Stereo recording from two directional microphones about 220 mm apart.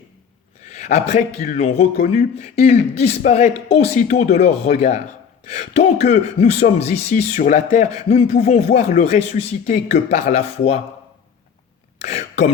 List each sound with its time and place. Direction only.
0.6 s speech: 30° left (ahead or behind)
12.0 s throat clearing: 30° left (ahead or behind)